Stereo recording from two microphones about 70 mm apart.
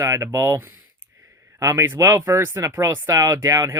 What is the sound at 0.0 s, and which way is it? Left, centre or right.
Speech, right.